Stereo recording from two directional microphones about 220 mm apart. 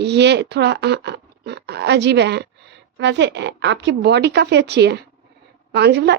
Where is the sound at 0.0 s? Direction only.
50° right (ahead or behind).